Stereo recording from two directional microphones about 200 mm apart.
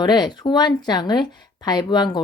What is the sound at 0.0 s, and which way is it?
Speech, 20° left (ahead or behind).